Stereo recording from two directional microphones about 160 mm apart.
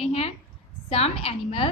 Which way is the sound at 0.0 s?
40° left (ahead or behind).